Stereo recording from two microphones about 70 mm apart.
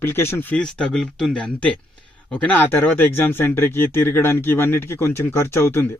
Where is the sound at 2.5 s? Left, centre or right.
Left.